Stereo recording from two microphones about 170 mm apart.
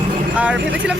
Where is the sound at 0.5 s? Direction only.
90° right.